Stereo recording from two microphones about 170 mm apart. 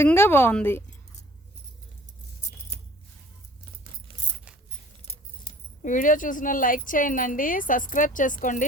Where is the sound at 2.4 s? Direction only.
45° left (ahead or behind).